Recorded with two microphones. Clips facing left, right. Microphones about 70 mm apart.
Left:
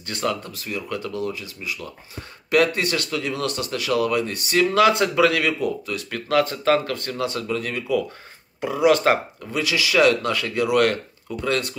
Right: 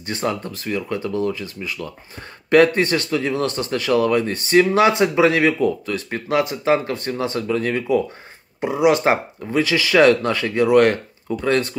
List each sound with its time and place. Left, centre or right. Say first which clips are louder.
0.0 s a man's voice: right 2 dB; right
8.5 s speech: right 1 dB; right
9.6 s a man's voice: right 4 dB; right